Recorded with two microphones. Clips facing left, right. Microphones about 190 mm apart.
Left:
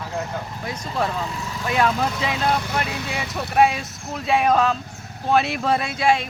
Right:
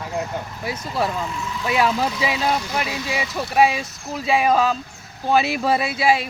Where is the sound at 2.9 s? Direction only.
60° left (ahead or behind).